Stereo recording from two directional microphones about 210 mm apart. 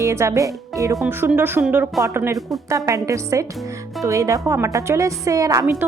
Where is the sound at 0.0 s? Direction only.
15° right (ahead or behind).